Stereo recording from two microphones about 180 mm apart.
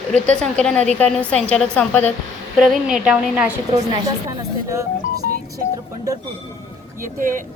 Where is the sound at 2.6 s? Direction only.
5° right (ahead or behind).